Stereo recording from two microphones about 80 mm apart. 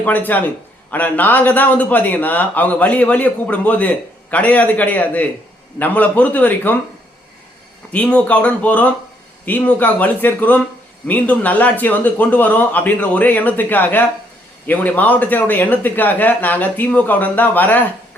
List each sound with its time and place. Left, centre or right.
0.0 s a man's voice: left
7.9 s a man's voice: centre